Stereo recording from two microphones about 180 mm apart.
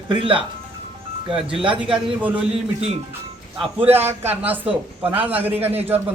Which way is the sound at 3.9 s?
10° right (ahead or behind).